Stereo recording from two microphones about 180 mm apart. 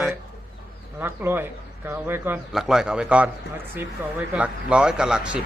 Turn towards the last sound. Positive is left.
turn(degrees=-5)  # may be behind; listen again after turning